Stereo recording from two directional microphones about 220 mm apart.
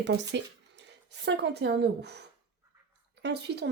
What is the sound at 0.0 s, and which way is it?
Speech, 50° right (ahead or behind).